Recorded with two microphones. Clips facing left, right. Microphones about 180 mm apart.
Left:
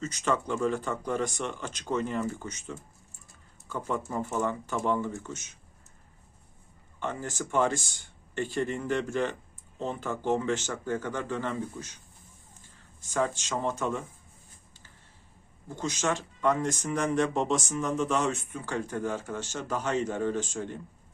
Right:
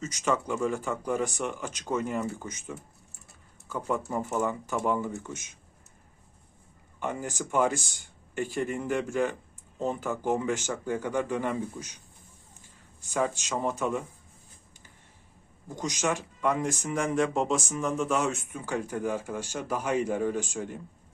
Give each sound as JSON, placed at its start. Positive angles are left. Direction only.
{"t": 0.0, "sound": "speech", "side_deg": -10}
{"t": 7.0, "sound": "speech", "side_deg": -10}
{"t": 13.1, "sound": "speech", "side_deg": -10}
{"t": 15.7, "sound": "speech", "side_deg": -10}